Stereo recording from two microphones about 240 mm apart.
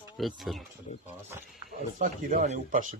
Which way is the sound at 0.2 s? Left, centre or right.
Centre.